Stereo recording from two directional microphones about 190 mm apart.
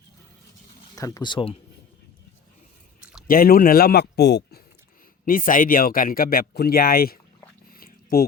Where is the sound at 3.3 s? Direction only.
50° left (ahead or behind).